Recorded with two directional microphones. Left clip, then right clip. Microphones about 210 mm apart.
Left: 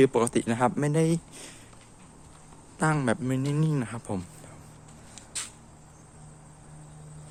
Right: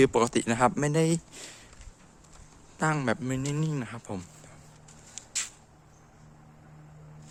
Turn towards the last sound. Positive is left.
turn(degrees=-10)  # may be behind; listen again after turning